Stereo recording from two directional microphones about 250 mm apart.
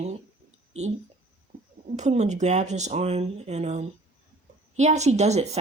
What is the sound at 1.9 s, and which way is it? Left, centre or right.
Speech, right.